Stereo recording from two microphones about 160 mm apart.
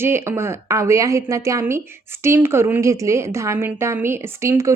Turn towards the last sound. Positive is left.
turn(degrees=-15)  # may be behind; listen again after turning